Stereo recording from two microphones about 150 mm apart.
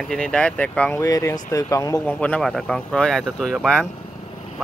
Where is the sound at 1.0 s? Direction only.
20° left (ahead or behind).